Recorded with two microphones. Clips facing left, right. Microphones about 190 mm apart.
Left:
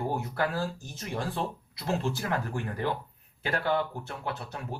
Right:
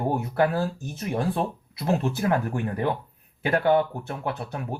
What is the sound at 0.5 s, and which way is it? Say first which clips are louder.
Speech: right 5 dB; 55° right (ahead or behind).